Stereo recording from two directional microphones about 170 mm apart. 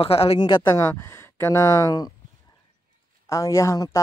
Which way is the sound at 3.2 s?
20° left (ahead or behind).